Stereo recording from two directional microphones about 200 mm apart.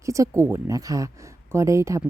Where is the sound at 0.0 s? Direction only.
15° right (ahead or behind).